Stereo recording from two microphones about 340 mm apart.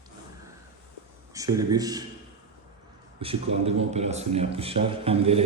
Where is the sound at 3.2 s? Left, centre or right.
Centre.